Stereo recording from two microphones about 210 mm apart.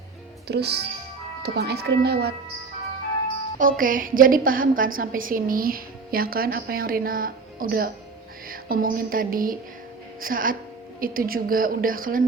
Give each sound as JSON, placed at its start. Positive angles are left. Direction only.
{"t": 0.4, "sound": "a woman's voice", "side_deg": -50}
{"t": 3.6, "sound": "a woman's voice", "side_deg": -40}